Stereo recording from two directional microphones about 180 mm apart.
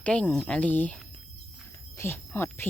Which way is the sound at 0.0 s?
5° left (ahead or behind).